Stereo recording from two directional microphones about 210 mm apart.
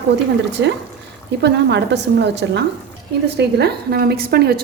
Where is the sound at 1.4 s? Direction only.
55° right (ahead or behind).